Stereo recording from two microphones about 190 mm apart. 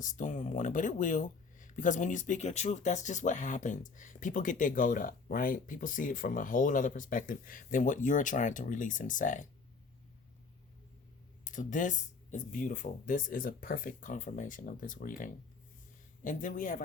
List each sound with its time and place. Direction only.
0.0 s speech: 40° left (ahead or behind)
11.4 s speech: 45° left (ahead or behind)